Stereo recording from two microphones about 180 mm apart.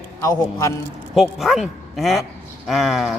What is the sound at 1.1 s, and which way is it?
Speech, centre (ahead or behind).